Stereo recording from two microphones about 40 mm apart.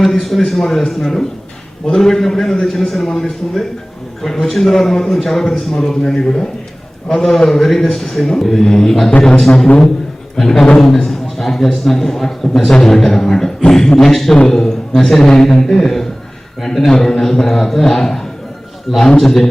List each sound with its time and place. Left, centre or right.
0.0 s a man's voice: centre
10.3 s a man's voice: centre